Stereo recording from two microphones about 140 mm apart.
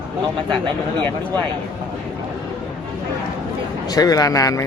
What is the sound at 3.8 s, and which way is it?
Speech, 25° left (ahead or behind).